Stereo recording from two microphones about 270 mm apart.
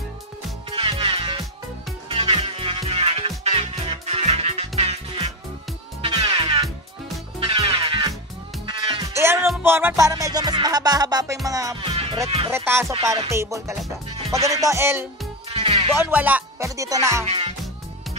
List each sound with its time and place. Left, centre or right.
0.7 s music: centre
11.4 s speech: centre
12.4 s music: centre
15.5 s music: right
16.0 s music: centre
17.3 s music: right